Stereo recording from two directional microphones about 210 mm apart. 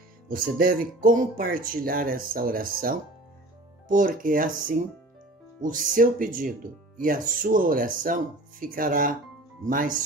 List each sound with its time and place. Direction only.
0.3 s speech: 40° right (ahead or behind)